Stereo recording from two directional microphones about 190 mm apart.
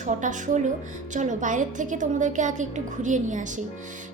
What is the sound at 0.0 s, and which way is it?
A woman's voice, 40° right (ahead or behind).